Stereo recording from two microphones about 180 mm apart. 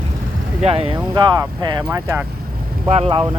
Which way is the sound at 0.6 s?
35° right (ahead or behind).